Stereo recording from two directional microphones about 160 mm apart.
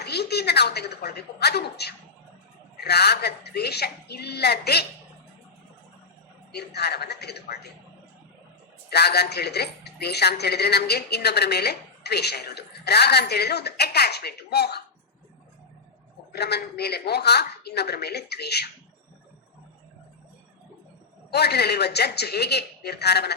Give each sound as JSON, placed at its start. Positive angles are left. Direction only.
{"t": 0.0, "sound": "a woman's voice", "side_deg": 90}
{"t": 6.5, "sound": "a woman's voice", "side_deg": 90}
{"t": 8.9, "sound": "a woman's voice", "side_deg": 90}
{"t": 16.3, "sound": "a woman's voice", "side_deg": 90}
{"t": 21.2, "sound": "a woman's voice", "side_deg": 90}